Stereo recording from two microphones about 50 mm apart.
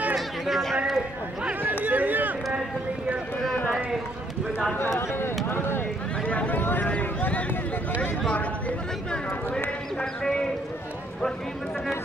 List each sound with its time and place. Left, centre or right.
0.5 s a sound: centre
1.9 s a sound: right
4.7 s speech: left
6.2 s speech: left
6.6 s speech: left
10.2 s speech: centre